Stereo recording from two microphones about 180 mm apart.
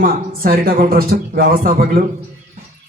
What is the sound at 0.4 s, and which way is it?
A man's voice, 55° right (ahead or behind).